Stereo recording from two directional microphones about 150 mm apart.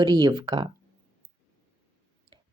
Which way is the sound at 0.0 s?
30° right (ahead or behind).